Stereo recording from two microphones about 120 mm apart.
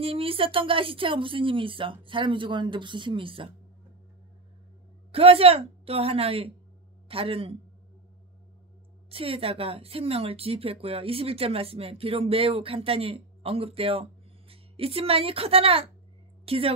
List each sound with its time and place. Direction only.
0.0 s speech: 50° right (ahead or behind)
5.1 s speech: 55° right (ahead or behind)
9.1 s a woman's voice: 50° right (ahead or behind)